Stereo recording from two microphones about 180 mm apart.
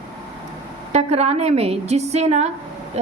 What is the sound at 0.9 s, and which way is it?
A woman's voice, 35° right (ahead or behind).